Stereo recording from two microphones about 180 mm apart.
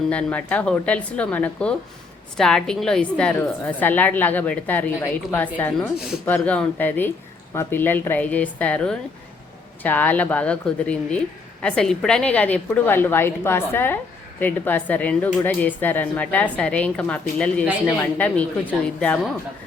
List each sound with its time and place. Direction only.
0.1 s a woman's voice: 5° left (ahead or behind)